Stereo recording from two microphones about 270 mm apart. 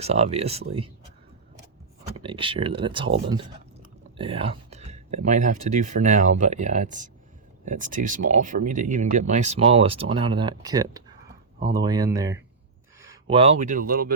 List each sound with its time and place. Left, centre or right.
0.0 s speech: right
2.2 s speech: centre
4.2 s speech: right